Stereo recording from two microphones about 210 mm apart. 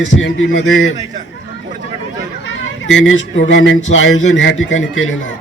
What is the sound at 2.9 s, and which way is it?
A man's voice, 65° left (ahead or behind).